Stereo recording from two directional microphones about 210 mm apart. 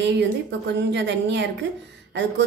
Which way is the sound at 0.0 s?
55° right (ahead or behind).